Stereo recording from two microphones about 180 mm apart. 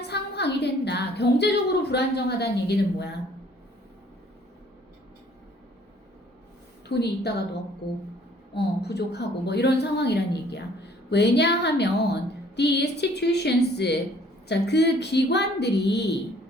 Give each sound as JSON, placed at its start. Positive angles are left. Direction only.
{"t": 0.1, "sound": "music", "side_deg": 70}
{"t": 1.9, "sound": "a woman's voice", "side_deg": 65}
{"t": 6.8, "sound": "a woman's voice", "side_deg": 70}
{"t": 8.5, "sound": "a woman's voice", "side_deg": 65}